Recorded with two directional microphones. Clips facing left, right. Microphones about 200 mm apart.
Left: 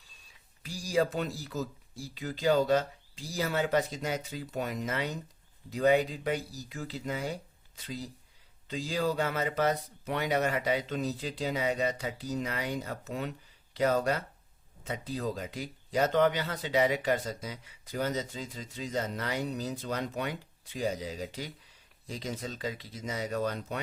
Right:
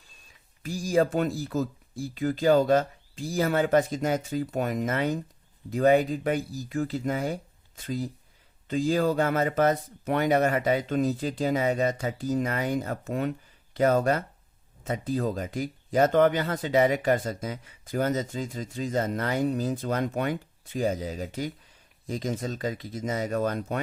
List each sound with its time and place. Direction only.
0.6 s speech: 50° right (ahead or behind)